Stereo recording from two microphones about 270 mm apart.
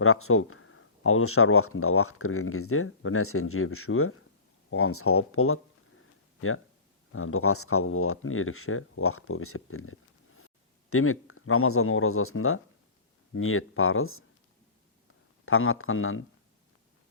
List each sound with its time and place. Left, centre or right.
0.0 s speech: left
7.1 s speech: left
15.4 s speech: left